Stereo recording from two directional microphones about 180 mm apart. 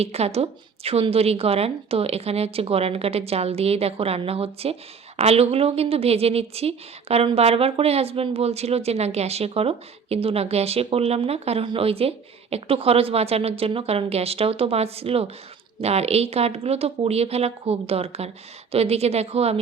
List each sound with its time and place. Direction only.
0.0 s a woman's voice: 35° right (ahead or behind)